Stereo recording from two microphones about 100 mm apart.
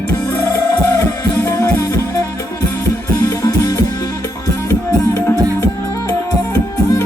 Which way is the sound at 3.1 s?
30° left (ahead or behind).